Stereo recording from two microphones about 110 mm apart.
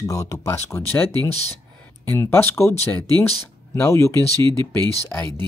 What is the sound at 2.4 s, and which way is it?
Speech, 25° left (ahead or behind).